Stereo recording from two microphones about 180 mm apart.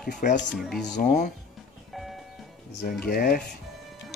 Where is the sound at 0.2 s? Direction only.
45° left (ahead or behind).